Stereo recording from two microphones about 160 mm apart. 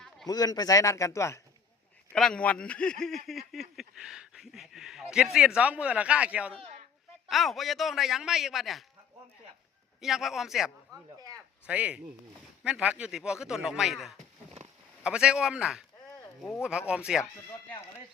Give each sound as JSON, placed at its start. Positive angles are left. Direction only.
{"t": 0.3, "sound": "speech", "side_deg": 25}
{"t": 2.1, "sound": "a man's voice", "side_deg": 5}
{"t": 10.0, "sound": "a man's voice", "side_deg": 0}